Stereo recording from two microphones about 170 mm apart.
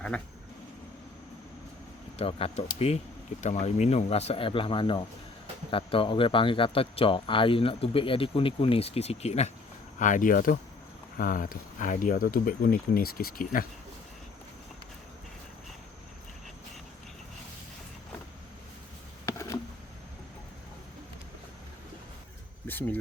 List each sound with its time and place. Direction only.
2.1 s speech: 35° left (ahead or behind)
10.0 s speech: 50° left (ahead or behind)
22.6 s a sound: 10° left (ahead or behind)